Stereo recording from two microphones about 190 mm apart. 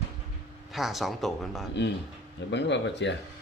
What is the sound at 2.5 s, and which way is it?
Speech, 70° left (ahead or behind).